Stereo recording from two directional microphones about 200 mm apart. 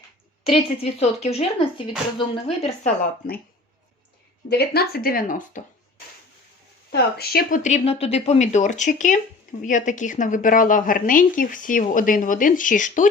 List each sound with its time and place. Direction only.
0.4 s speech: 30° left (ahead or behind)
4.4 s a woman's voice: 50° left (ahead or behind)
6.9 s speech: 50° left (ahead or behind)